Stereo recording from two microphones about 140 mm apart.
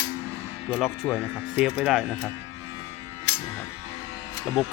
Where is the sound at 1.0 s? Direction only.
15° left (ahead or behind).